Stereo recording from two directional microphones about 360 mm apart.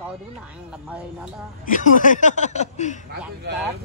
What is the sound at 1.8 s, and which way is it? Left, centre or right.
Speech, left.